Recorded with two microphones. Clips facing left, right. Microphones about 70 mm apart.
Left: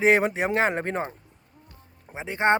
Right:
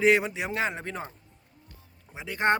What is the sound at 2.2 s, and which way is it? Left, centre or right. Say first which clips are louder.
Speech: left 3 dB; left.